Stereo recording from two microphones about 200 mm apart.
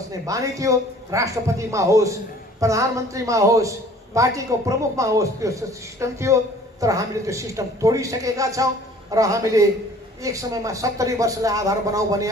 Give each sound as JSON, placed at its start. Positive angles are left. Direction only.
{"t": 0.3, "sound": "a man's voice", "side_deg": -15}